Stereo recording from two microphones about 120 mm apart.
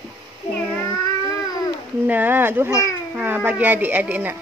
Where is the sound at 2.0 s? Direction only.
15° right (ahead or behind).